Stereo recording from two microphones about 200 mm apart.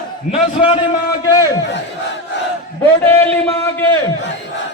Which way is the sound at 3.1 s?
10° left (ahead or behind).